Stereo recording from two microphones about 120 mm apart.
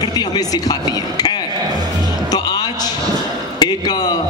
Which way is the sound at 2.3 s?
35° left (ahead or behind).